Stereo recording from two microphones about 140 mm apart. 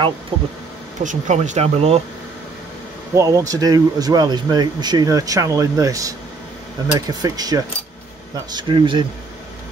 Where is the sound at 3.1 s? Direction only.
25° right (ahead or behind).